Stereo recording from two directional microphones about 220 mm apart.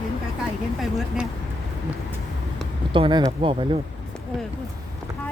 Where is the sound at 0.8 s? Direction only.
Centre (ahead or behind).